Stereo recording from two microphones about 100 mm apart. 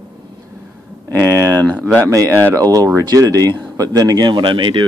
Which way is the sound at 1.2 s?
30° right (ahead or behind).